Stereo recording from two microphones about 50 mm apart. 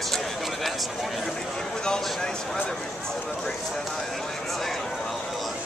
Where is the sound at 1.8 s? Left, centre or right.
Centre.